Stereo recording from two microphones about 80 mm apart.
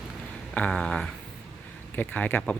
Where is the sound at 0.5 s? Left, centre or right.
Centre.